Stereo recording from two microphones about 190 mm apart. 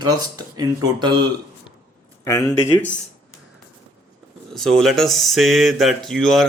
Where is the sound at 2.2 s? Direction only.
15° left (ahead or behind).